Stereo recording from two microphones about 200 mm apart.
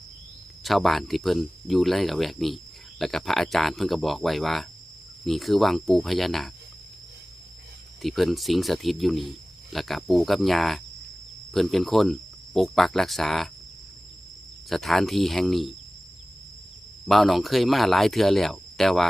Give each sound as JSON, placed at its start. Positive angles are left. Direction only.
{"t": 0.6, "sound": "speech", "side_deg": 0}
{"t": 8.0, "sound": "speech", "side_deg": 0}
{"t": 14.7, "sound": "speech", "side_deg": 0}
{"t": 17.1, "sound": "speech", "side_deg": 0}